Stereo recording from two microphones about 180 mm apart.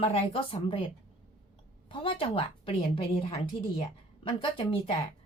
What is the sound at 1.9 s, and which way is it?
A woman's voice, 30° left (ahead or behind).